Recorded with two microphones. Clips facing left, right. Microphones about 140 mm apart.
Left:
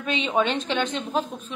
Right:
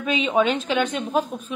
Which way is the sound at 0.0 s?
5° right (ahead or behind).